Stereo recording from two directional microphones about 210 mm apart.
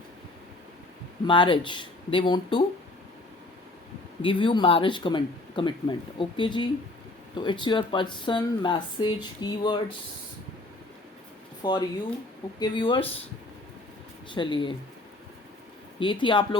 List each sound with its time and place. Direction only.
1.3 s speech: 25° left (ahead or behind)
4.2 s speech: 25° left (ahead or behind)
11.6 s speech: 20° left (ahead or behind)
14.3 s speech: 25° left (ahead or behind)
16.0 s speech: 25° left (ahead or behind)